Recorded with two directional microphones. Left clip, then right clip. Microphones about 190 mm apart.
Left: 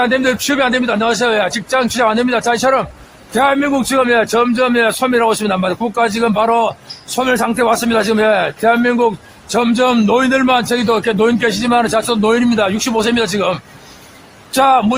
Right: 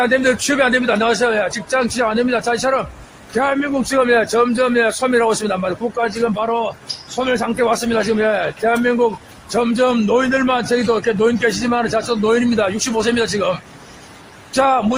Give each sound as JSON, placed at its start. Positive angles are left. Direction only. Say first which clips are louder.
{"t": 0.0, "sound": "a man's voice", "louder": "left 1 dB", "side_deg": 25}